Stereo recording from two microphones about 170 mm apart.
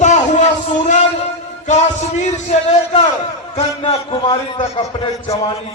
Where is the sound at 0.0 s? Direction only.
45° left (ahead or behind).